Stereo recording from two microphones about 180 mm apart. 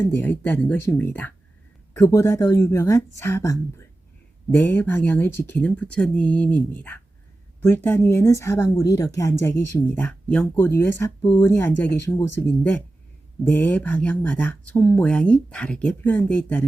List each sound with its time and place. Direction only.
0.0 s speech: 10° left (ahead or behind)